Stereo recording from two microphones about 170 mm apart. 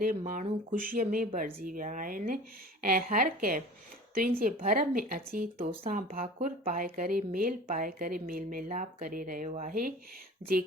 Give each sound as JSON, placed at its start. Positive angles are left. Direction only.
{"t": 0.3, "sound": "speech", "side_deg": -50}